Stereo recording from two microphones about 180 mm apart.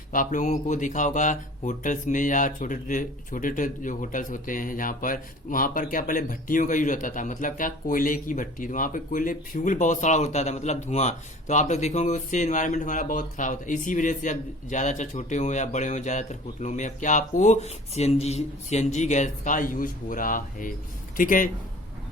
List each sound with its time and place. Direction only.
0.1 s speech: 45° left (ahead or behind)